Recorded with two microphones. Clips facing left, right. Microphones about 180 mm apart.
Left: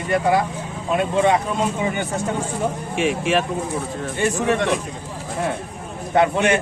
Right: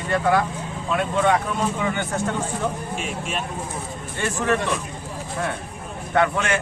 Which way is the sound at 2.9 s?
80° left.